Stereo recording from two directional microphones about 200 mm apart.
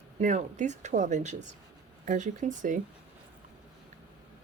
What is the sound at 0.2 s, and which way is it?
Speech, 35° right (ahead or behind).